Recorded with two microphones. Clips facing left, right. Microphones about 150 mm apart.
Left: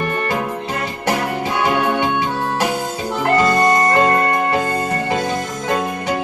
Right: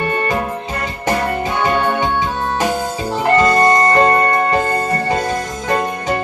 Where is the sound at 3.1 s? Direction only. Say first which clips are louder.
Right 2 dB; 35° right (ahead or behind).